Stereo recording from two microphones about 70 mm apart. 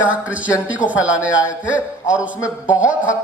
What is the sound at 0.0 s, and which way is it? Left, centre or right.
A man's voice, centre.